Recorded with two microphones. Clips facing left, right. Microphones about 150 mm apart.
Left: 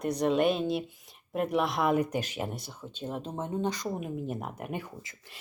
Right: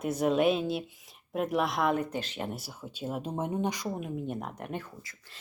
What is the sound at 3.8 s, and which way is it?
Speech, 5° left (ahead or behind).